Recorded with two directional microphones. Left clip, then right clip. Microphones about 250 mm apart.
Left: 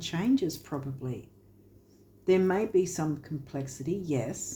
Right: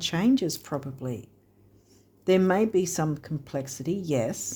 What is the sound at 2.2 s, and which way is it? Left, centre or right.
Speech, right.